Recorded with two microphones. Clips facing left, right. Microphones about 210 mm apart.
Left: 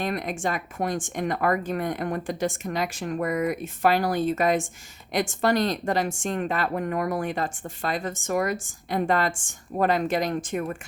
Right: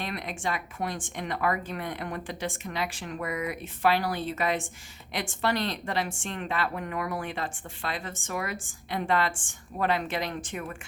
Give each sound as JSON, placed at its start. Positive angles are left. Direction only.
{"t": 0.0, "sound": "speech", "side_deg": 45}